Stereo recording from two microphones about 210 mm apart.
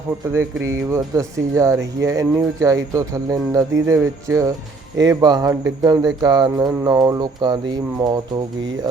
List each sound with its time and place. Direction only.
0.3 s speech: 15° right (ahead or behind)